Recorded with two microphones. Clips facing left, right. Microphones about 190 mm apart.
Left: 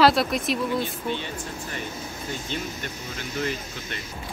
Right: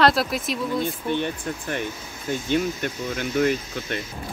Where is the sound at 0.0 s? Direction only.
Centre (ahead or behind).